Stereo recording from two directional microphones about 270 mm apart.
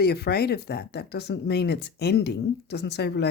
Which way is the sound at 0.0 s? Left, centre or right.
Left.